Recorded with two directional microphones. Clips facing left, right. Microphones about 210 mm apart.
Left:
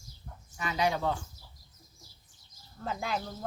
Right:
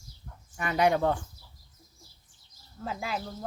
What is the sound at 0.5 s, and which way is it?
Speech, 55° right (ahead or behind).